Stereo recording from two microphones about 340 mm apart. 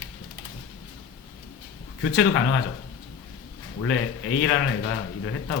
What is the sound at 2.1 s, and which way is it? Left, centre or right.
Speech, left.